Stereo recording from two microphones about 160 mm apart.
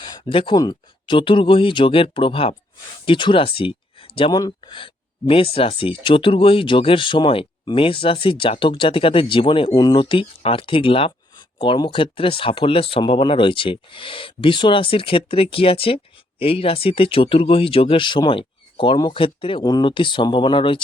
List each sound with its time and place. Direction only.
0.0 s speech: 30° left (ahead or behind)